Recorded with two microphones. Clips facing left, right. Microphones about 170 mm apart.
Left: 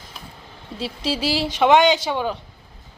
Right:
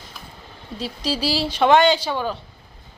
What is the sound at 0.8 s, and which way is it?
Speech, 25° left (ahead or behind).